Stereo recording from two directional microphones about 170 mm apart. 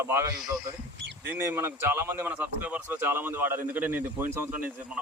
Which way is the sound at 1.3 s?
15° right (ahead or behind).